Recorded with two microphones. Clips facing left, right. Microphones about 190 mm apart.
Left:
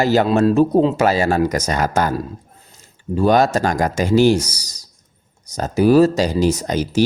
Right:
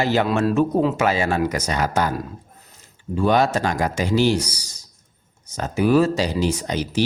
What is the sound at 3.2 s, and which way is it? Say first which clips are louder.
Speech: left 4 dB; 40° left (ahead or behind).